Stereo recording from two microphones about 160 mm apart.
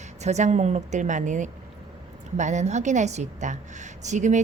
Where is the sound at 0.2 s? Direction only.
45° right (ahead or behind).